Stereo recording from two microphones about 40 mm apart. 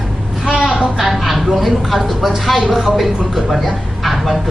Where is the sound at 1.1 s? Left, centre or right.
Centre.